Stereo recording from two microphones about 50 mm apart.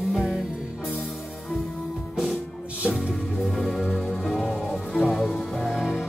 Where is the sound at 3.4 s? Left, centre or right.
Centre.